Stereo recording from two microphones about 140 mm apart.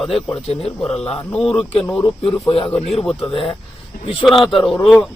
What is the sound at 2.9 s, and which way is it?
Speech, centre (ahead or behind).